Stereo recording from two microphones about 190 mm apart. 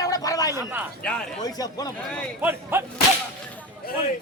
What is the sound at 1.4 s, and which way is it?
Speech, 20° left (ahead or behind).